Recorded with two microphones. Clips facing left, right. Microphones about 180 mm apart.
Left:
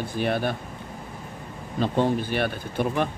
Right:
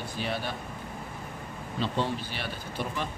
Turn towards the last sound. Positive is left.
turn(degrees=55)  # may be behind; listen again after turning